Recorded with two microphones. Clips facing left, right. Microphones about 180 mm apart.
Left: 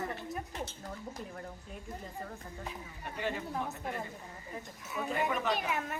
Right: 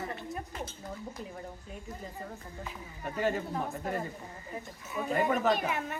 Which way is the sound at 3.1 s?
40° right (ahead or behind).